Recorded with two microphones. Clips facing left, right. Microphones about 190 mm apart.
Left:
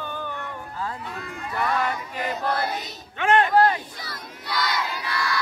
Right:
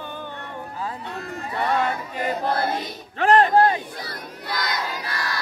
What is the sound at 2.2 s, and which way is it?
Choir, 30° right (ahead or behind).